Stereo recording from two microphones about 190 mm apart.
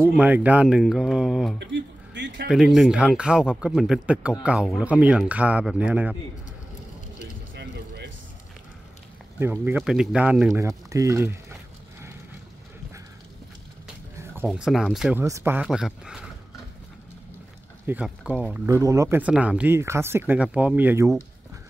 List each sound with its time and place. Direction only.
0.0 s speech: 10° right (ahead or behind)
1.6 s speech: 65° right (ahead or behind)
2.4 s speech: centre (ahead or behind)
7.5 s a sound: 60° right (ahead or behind)
9.4 s speech: 10° right (ahead or behind)
14.4 s speech: centre (ahead or behind)
15.2 s speech: 15° right (ahead or behind)
17.8 s speech: 5° right (ahead or behind)
18.8 s speech: 15° right (ahead or behind)